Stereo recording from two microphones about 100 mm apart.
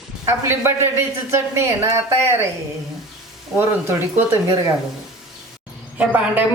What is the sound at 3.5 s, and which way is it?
Speech, 20° right (ahead or behind).